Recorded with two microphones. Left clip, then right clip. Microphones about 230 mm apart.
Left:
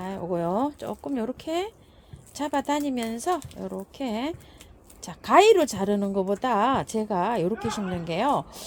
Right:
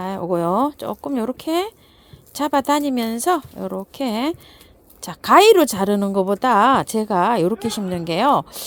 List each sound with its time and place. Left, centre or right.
0.0 s speech: right